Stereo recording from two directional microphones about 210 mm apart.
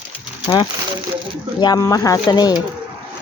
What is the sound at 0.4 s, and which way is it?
Speech, 20° left (ahead or behind).